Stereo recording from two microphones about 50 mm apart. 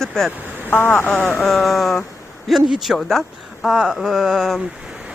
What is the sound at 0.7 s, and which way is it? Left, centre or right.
Speech, left.